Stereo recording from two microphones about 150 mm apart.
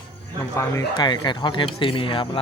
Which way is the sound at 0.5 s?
20° left (ahead or behind).